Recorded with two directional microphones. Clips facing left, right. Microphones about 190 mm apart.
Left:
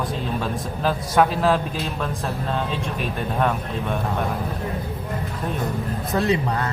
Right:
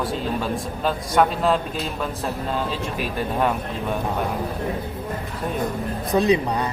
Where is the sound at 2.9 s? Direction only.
10° right (ahead or behind).